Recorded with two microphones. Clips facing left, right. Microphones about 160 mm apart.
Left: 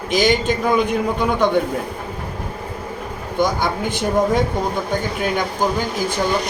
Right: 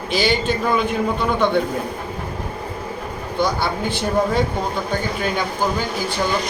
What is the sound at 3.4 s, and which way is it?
A man's voice, 15° left (ahead or behind).